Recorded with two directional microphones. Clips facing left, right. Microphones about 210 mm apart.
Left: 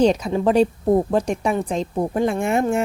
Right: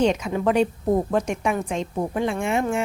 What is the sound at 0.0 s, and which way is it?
A woman's voice, 35° left (ahead or behind).